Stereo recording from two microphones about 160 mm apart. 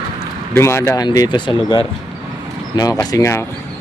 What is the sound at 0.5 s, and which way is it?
Speech, 15° left (ahead or behind).